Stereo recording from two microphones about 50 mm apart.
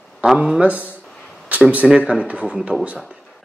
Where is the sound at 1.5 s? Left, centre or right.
Right.